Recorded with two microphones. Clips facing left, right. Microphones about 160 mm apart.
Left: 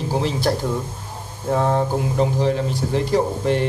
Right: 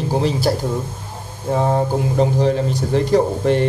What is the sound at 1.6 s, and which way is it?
Speech, 35° right (ahead or behind).